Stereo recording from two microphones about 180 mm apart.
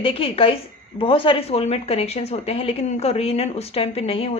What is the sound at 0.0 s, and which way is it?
Speech, 30° left (ahead or behind).